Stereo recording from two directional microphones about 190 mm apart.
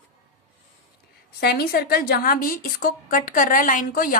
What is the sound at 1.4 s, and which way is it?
A woman's voice, 55° left (ahead or behind).